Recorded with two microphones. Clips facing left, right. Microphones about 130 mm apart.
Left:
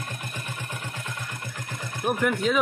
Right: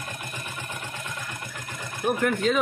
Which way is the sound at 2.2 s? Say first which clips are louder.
Even; 5° left (ahead or behind).